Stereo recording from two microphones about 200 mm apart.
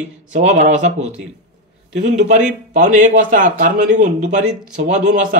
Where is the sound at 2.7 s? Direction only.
40° right (ahead or behind).